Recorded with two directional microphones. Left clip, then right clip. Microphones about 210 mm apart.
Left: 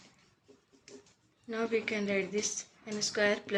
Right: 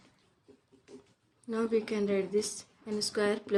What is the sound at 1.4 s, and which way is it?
Speech, 60° right (ahead or behind).